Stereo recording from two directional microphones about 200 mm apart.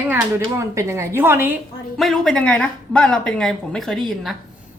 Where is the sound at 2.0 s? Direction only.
Centre (ahead or behind).